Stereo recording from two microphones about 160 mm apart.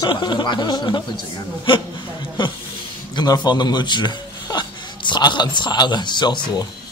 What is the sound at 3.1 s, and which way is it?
Speech, 25° left (ahead or behind).